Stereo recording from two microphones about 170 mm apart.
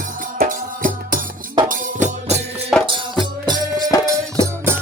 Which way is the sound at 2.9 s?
25° right (ahead or behind).